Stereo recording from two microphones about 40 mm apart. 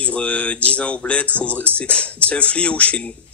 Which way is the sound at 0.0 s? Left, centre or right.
Left.